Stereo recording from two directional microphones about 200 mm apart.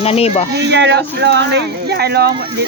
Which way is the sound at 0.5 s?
60° right (ahead or behind).